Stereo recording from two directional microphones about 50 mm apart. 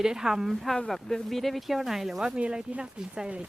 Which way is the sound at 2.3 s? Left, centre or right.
Right.